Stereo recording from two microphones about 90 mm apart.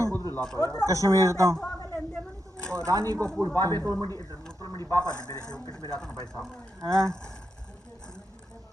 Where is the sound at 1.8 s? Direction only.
40° left (ahead or behind).